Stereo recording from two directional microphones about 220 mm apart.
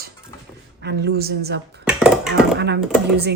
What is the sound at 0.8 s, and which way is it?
Speech, 50° right (ahead or behind).